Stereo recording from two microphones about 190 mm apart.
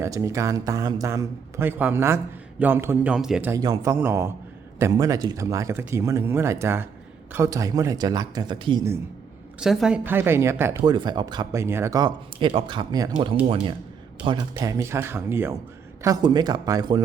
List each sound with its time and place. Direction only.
0.0 s a man's voice: 15° right (ahead or behind)
3.5 s a man's voice: 20° right (ahead or behind)
9.6 s a man's voice: 5° right (ahead or behind); by 13.3 s 20° right (ahead or behind)
14.5 s a man's voice: 15° right (ahead or behind)